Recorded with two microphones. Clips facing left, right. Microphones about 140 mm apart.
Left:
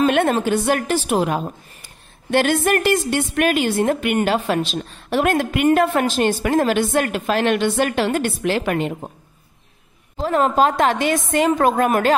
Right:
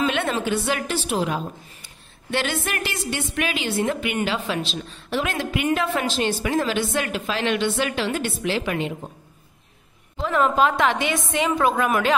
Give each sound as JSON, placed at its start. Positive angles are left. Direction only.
{"t": 0.0, "sound": "a woman's voice", "side_deg": 50}
{"t": 10.2, "sound": "a woman's voice", "side_deg": 40}